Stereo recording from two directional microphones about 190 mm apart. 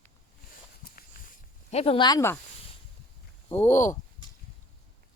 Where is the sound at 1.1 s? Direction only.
50° left (ahead or behind).